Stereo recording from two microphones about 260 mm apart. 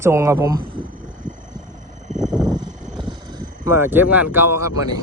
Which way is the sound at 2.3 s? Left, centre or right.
Centre.